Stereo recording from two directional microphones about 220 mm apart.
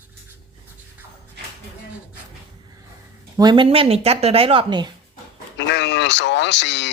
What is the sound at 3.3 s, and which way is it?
Speech, 20° right (ahead or behind).